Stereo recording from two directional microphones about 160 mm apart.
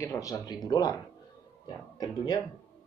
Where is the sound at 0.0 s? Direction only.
20° left (ahead or behind).